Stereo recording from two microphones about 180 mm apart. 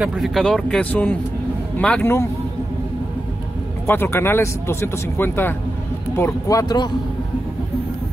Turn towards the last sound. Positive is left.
turn(degrees=20)  # may be behind; listen again after turning